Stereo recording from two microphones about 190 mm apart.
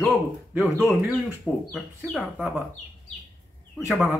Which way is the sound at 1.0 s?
5° left (ahead or behind).